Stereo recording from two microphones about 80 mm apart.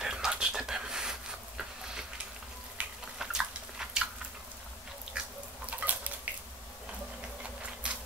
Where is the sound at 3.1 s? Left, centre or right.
Centre.